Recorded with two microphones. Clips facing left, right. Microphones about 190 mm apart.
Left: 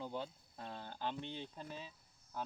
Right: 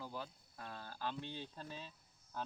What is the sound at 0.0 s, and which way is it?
Speech, 25° left (ahead or behind).